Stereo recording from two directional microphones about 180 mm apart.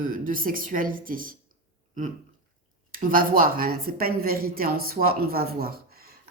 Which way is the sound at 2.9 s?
50° right (ahead or behind).